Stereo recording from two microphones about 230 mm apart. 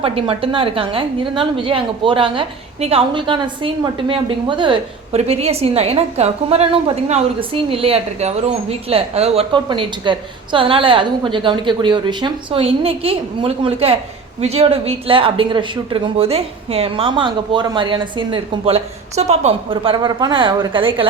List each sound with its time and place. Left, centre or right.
0.0 s speech: right